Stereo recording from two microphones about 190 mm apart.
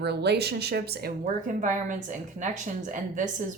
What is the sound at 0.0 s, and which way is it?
Speech, 60° right (ahead or behind).